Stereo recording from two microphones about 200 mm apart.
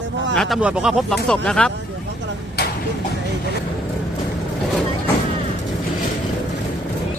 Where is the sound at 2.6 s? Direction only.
55° left (ahead or behind).